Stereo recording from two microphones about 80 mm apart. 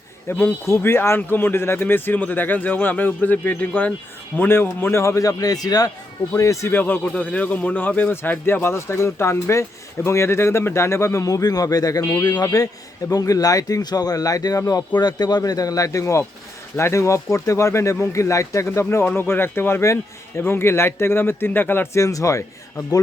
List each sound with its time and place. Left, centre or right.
0.3 s a man's voice: left
4.4 s a man's voice: left
6.7 s a man's voice: left
22.0 s speech: left